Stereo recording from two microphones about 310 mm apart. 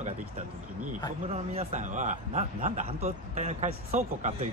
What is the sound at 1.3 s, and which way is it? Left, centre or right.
A man's voice, centre.